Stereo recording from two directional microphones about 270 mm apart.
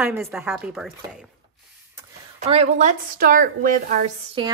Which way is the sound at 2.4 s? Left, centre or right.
Right.